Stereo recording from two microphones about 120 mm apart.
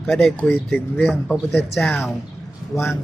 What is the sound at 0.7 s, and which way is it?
A man's voice, 10° left (ahead or behind).